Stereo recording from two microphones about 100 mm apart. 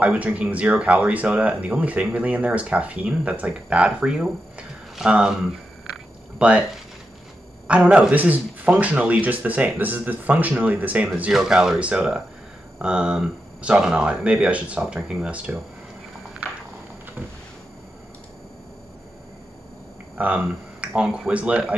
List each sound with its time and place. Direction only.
0.0 s speech: 15° right (ahead or behind)
6.3 s speech: 10° right (ahead or behind)
7.6 s speech: 10° right (ahead or behind)
20.2 s speech: 15° right (ahead or behind)